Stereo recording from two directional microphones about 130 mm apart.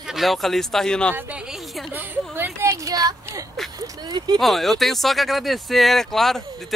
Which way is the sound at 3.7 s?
30° right (ahead or behind).